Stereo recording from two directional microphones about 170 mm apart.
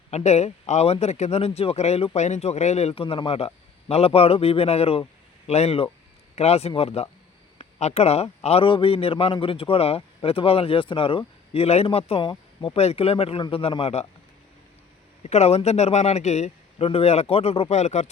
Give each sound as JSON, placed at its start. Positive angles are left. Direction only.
{"t": 0.1, "sound": "a man's voice", "side_deg": 40}
{"t": 15.2, "sound": "a man's voice", "side_deg": 40}